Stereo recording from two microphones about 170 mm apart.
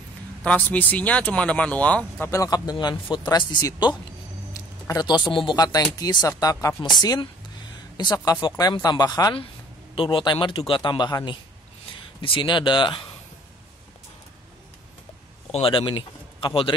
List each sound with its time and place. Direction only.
0.7 s speech: 10° left (ahead or behind)
4.6 s a sound: 20° left (ahead or behind)
5.3 s speech: 30° left (ahead or behind)
15.5 s speech: 30° left (ahead or behind)